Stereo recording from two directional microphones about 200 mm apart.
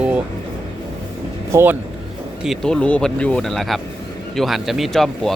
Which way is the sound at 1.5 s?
10° right (ahead or behind).